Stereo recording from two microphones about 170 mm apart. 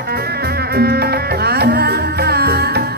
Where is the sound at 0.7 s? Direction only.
65° right (ahead or behind).